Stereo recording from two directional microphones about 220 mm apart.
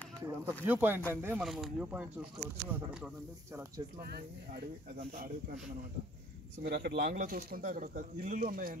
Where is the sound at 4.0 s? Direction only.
45° right (ahead or behind).